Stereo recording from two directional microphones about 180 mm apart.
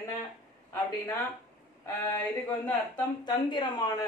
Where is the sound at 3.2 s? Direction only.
25° left (ahead or behind).